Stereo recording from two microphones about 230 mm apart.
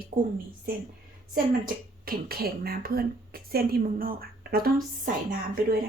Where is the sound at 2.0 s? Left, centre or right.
Right.